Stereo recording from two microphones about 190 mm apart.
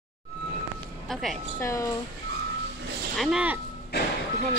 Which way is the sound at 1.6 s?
15° left (ahead or behind).